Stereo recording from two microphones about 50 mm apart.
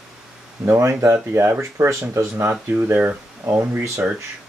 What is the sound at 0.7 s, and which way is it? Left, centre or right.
Speech, right.